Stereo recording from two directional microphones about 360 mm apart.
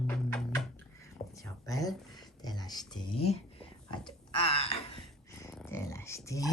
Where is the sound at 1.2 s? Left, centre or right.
Centre.